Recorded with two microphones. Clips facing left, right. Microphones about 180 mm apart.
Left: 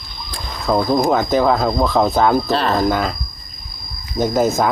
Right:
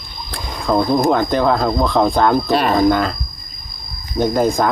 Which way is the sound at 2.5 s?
15° right (ahead or behind).